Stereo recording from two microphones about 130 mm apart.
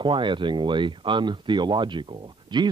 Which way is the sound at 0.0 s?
40° right (ahead or behind).